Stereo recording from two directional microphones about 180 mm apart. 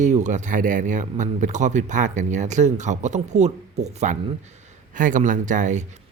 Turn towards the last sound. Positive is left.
turn(degrees=-40)  # may be behind; listen again after turning